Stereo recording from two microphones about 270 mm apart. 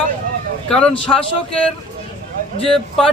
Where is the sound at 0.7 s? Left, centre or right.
Centre.